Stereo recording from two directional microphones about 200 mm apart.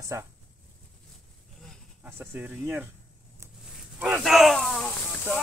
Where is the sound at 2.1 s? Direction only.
10° right (ahead or behind).